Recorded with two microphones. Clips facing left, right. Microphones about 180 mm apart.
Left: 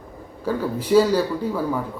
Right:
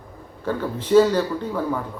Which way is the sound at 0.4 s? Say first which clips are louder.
Left 2 dB; 10° left (ahead or behind).